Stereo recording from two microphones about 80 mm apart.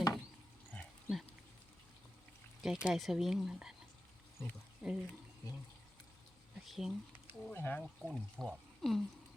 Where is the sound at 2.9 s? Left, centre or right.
Centre.